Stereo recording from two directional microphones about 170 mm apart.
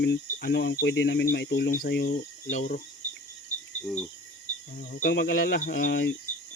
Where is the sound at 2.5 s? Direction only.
50° left (ahead or behind).